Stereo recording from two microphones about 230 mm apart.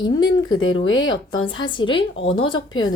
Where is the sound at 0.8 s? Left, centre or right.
Left.